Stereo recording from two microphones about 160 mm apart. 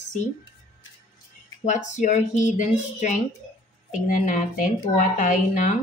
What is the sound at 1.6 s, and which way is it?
A woman's voice, 50° left (ahead or behind).